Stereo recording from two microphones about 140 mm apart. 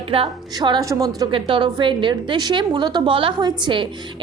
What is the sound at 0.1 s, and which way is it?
A woman's voice, 35° right (ahead or behind).